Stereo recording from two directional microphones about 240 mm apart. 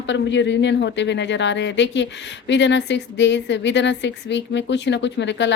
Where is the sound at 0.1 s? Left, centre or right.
Left.